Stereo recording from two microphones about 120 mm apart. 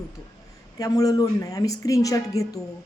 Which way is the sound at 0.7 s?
30° left (ahead or behind).